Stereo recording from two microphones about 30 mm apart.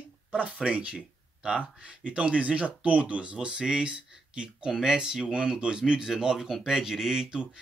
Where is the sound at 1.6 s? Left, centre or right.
Right.